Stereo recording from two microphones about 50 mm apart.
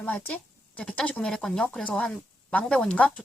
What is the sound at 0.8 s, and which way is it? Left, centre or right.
Speech, centre.